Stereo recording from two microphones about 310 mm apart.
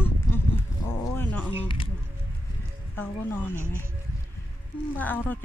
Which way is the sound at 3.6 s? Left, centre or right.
Centre.